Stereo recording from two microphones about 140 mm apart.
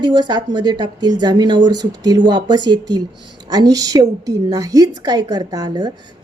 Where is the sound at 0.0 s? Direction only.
30° right (ahead or behind).